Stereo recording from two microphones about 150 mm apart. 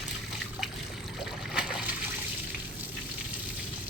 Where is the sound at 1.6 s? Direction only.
5° right (ahead or behind).